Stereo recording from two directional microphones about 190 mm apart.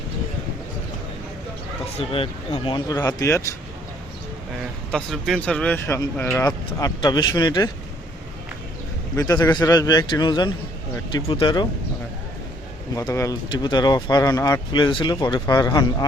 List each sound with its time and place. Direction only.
2.0 s speech: 30° left (ahead or behind)
4.9 s speech: 5° left (ahead or behind); by 7.7 s 20° left (ahead or behind)
9.1 s speech: 20° left (ahead or behind)
12.9 s speech: 15° left (ahead or behind)